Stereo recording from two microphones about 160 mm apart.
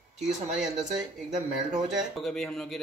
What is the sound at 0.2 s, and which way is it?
Speech, 5° right (ahead or behind).